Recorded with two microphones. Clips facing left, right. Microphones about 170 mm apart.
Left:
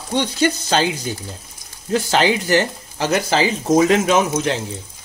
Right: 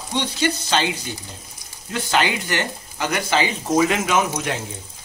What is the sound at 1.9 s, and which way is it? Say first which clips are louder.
Speech: left 5 dB; 35° left (ahead or behind).